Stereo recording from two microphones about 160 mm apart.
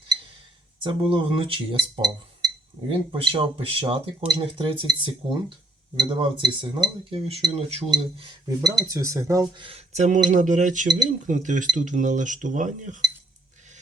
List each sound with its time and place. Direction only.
1.1 s speech: 30° right (ahead or behind)
3.1 s speech: 35° right (ahead or behind)
7.9 s speech: 25° right (ahead or behind)
9.6 s speech: 40° right (ahead or behind)